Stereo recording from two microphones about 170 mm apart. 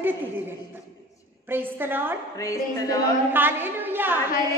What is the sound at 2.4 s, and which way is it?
Speech, 20° left (ahead or behind).